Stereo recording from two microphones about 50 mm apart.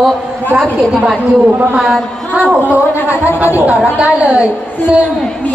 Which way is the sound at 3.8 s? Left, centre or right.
Right.